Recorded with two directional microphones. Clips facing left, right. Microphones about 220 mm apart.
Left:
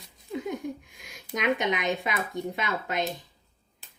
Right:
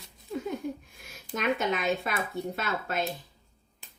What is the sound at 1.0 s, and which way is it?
Speech, 15° left (ahead or behind).